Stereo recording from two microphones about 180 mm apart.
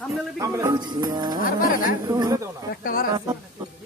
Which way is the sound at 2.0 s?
20° right (ahead or behind).